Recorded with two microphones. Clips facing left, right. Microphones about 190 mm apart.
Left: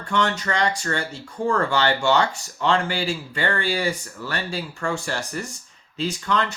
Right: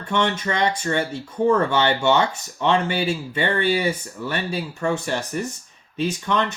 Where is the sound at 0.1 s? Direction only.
20° right (ahead or behind).